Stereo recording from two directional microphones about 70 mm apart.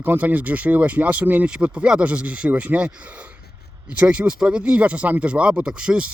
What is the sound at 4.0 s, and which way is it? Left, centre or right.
Speech, centre.